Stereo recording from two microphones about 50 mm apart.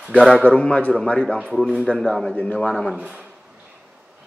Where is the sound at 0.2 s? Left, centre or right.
Left.